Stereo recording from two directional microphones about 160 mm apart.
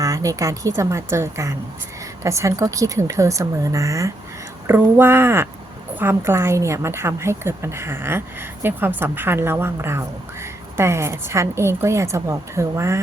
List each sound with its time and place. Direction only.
0.0 s a woman's voice: 20° right (ahead or behind)